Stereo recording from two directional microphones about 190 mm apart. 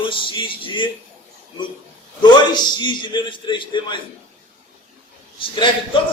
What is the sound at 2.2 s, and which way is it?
A man's voice, 25° left (ahead or behind).